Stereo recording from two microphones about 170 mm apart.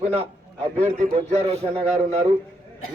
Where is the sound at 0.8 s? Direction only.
40° right (ahead or behind).